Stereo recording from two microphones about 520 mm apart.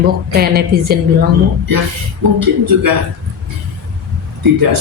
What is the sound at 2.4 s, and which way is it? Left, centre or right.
Speech, right.